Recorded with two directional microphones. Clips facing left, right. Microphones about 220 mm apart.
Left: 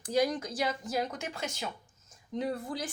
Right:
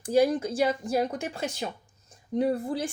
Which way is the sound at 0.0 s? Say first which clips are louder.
Right 6 dB; 30° right (ahead or behind).